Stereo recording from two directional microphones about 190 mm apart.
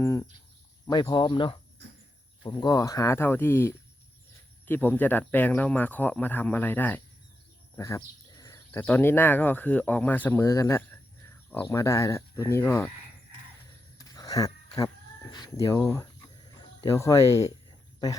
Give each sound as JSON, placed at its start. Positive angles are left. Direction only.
{"t": 0.0, "sound": "speech", "side_deg": 15}
{"t": 14.0, "sound": "a sound", "side_deg": 20}
{"t": 15.3, "sound": "speech", "side_deg": 20}